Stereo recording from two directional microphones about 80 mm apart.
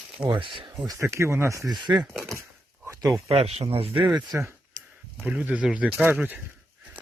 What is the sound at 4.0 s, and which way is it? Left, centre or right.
Speech, right.